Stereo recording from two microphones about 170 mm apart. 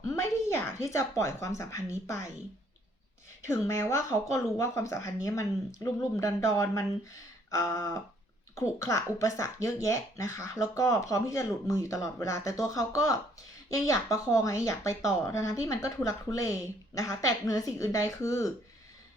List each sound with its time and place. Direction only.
0.0 s speech: 15° left (ahead or behind)
3.4 s speech: 15° left (ahead or behind)